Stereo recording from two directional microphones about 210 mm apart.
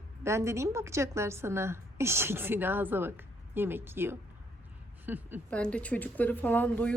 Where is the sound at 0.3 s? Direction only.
15° right (ahead or behind).